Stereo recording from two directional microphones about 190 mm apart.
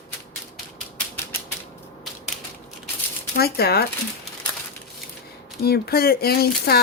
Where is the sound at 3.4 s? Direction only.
55° left (ahead or behind).